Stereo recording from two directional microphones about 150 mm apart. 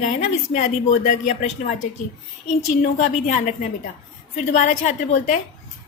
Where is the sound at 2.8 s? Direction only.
55° left (ahead or behind).